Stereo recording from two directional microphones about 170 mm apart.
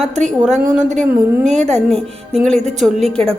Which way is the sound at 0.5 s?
45° right (ahead or behind).